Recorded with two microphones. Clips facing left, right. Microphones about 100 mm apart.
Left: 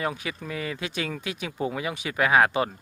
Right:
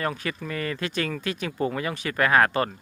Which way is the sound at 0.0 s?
10° left (ahead or behind).